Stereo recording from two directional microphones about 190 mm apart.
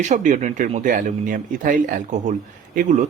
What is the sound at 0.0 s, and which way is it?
Speech, 40° right (ahead or behind).